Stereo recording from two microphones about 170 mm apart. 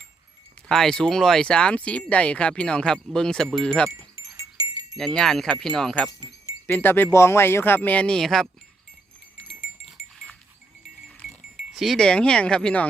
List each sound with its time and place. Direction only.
0.7 s speech: 5° left (ahead or behind)
3.8 s wind chime: 20° right (ahead or behind)
4.9 s speech: centre (ahead or behind)
9.6 s livestock: centre (ahead or behind)
11.2 s speech: centre (ahead or behind)